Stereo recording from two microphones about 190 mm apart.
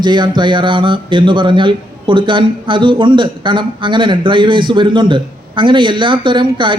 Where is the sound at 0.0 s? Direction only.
25° right (ahead or behind).